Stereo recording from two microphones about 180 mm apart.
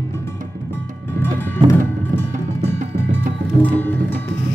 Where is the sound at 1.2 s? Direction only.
10° left (ahead or behind).